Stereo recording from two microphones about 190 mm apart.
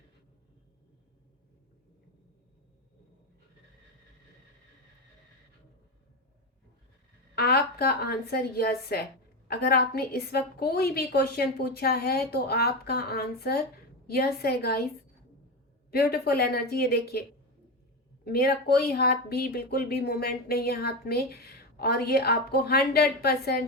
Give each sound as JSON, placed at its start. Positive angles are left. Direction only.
{"t": 7.3, "sound": "a woman's voice", "side_deg": 55}
{"t": 15.9, "sound": "a woman's voice", "side_deg": 55}
{"t": 18.3, "sound": "a woman's voice", "side_deg": 55}